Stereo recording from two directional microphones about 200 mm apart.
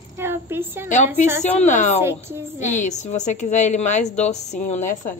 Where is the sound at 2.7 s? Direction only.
35° left (ahead or behind).